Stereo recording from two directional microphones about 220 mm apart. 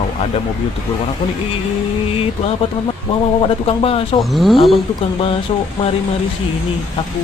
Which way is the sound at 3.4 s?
25° left (ahead or behind).